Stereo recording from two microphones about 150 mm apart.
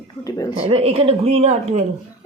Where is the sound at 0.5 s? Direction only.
45° right (ahead or behind).